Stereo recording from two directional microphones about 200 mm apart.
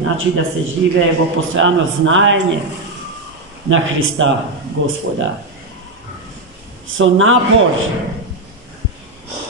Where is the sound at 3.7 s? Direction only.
75° right (ahead or behind).